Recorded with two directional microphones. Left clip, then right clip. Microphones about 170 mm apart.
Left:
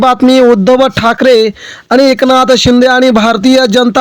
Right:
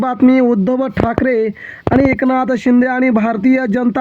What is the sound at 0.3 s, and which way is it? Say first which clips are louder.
Speech: left 9 dB; 35° left (ahead or behind).